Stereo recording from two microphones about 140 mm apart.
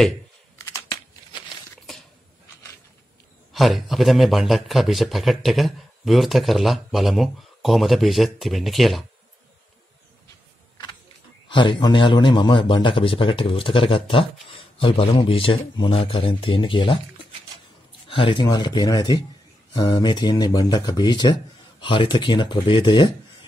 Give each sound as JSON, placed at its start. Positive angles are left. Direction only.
{"t": 3.5, "sound": "speech", "side_deg": 0}
{"t": 11.4, "sound": "a man's voice", "side_deg": 35}